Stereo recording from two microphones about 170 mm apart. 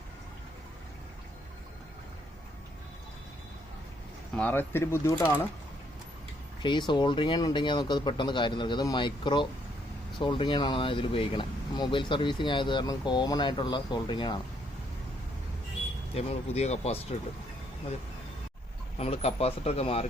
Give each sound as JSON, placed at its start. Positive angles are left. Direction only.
{"t": 4.4, "sound": "speech", "side_deg": 10}
{"t": 6.6, "sound": "speech", "side_deg": 25}
{"t": 16.1, "sound": "speech", "side_deg": 40}
{"t": 18.9, "sound": "speech", "side_deg": 35}